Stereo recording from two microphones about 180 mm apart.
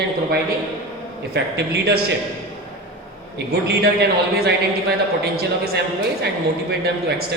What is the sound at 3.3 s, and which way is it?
A man's voice, 65° right (ahead or behind).